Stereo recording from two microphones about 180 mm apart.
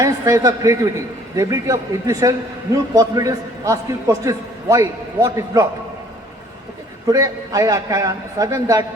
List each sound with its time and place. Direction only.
0.0 s a man's voice: 15° right (ahead or behind)
7.1 s a man's voice: 20° right (ahead or behind)